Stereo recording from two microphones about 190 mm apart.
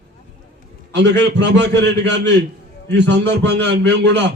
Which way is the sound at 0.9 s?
65° right (ahead or behind).